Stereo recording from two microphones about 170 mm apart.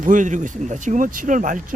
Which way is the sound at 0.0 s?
50° right (ahead or behind).